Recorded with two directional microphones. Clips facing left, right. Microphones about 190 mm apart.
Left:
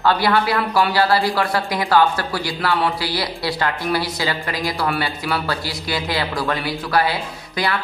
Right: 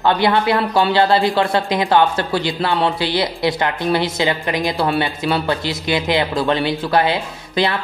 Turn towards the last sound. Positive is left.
turn(degrees=-25)  # may be behind; listen again after turning